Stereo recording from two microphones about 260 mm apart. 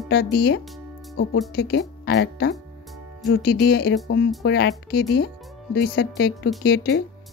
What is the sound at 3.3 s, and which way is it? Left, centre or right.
Speech, left.